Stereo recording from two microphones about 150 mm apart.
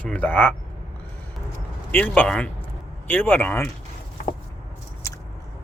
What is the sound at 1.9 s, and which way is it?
Speech, 10° left (ahead or behind).